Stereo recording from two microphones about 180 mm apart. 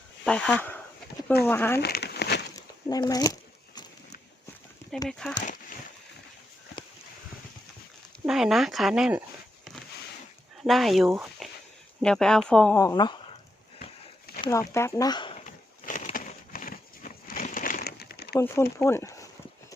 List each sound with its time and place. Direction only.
0.3 s speech: 5° left (ahead or behind)
1.8 s crumpling: 65° left (ahead or behind)
2.6 s a sound: 20° left (ahead or behind)
5.0 s speech: 5° left (ahead or behind)
8.3 s speech: centre (ahead or behind)
10.6 s speech: centre (ahead or behind)
12.7 s speech: 20° left (ahead or behind)
14.3 s a sound: 60° left (ahead or behind)
14.7 s speech: 15° left (ahead or behind)
15.4 s a sound: 45° left (ahead or behind); by 18.3 s 60° left (ahead or behind)
18.3 s speech: 15° left (ahead or behind)